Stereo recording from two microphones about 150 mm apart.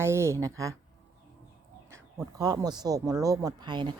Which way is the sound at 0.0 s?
15° right (ahead or behind).